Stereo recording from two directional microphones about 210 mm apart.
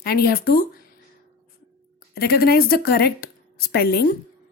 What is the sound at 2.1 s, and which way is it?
A woman's voice, 50° left (ahead or behind).